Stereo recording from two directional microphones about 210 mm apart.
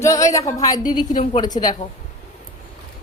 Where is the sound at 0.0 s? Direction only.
15° left (ahead or behind).